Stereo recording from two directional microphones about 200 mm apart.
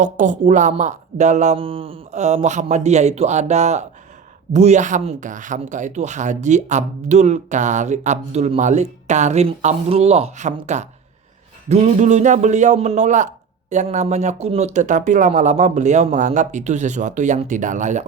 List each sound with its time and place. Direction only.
0.0 s a man's voice: 40° right (ahead or behind)